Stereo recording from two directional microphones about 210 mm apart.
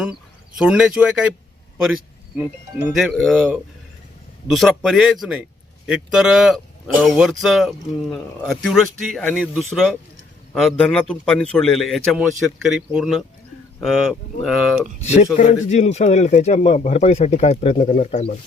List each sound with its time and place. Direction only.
0.6 s a man's voice: 5° right (ahead or behind)
15.0 s speech: 30° left (ahead or behind)